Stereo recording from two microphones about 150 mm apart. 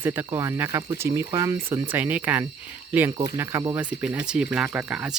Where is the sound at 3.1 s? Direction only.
20° right (ahead or behind).